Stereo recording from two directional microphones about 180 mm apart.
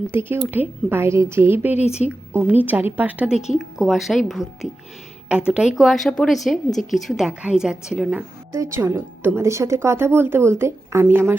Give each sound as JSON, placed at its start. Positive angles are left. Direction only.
{"t": 0.1, "sound": "a woman's voice", "side_deg": -15}
{"t": 1.7, "sound": "a woman's voice", "side_deg": 35}
{"t": 2.0, "sound": "a woman's voice", "side_deg": -10}
{"t": 8.5, "sound": "a woman's voice", "side_deg": -15}